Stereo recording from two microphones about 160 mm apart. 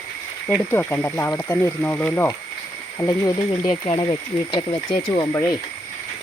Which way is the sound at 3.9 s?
30° left (ahead or behind).